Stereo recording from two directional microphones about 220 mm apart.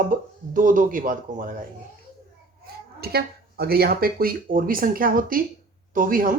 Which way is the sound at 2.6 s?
45° right (ahead or behind).